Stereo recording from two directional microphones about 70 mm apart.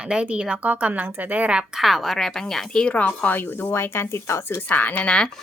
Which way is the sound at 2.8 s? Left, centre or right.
Centre.